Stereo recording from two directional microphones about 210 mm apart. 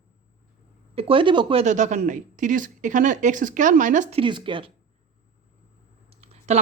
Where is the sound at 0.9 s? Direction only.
25° right (ahead or behind).